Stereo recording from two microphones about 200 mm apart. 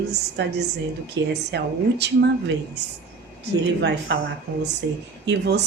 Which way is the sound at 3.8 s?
60° right (ahead or behind).